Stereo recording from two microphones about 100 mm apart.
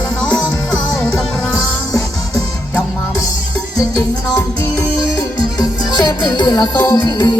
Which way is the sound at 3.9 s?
35° left (ahead or behind).